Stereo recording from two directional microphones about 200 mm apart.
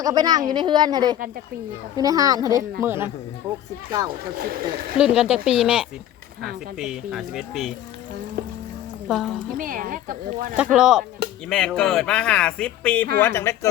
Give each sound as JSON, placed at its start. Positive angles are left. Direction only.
{"t": 0.0, "sound": "a child's voice", "side_deg": -20}
{"t": 4.4, "sound": "speech", "side_deg": -45}
{"t": 4.9, "sound": "speech", "side_deg": -5}
{"t": 9.0, "sound": "a woman's voice", "side_deg": 0}
{"t": 9.6, "sound": "speech", "side_deg": -45}
{"t": 10.6, "sound": "speech", "side_deg": -5}